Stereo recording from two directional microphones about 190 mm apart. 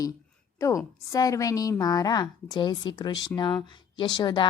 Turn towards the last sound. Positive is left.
turn(degrees=25)  # may be behind; listen again after turning